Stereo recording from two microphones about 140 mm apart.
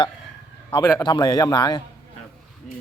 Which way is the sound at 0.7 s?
25° left (ahead or behind).